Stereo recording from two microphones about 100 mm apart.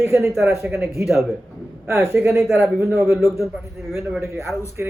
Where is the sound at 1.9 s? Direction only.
25° right (ahead or behind).